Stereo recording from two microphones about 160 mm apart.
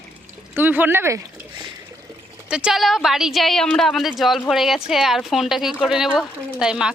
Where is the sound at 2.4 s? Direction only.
5° right (ahead or behind).